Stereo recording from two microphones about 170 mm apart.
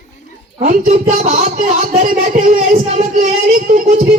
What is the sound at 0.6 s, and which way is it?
A man's voice, 45° right (ahead or behind).